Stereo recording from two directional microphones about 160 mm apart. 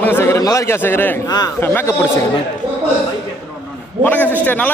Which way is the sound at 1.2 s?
25° left (ahead or behind).